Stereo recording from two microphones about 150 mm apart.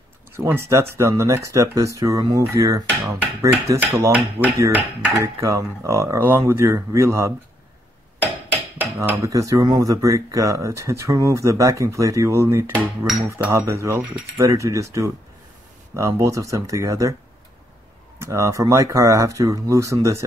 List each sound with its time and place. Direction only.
0.3 s speech: 15° right (ahead or behind)
3.6 s dishes: 20° right (ahead or behind)
4.4 s speech: 15° right (ahead or behind)
8.2 s hammer: 10° right (ahead or behind)
9.2 s speech: 20° right (ahead or behind)
18.2 s speech: 20° right (ahead or behind)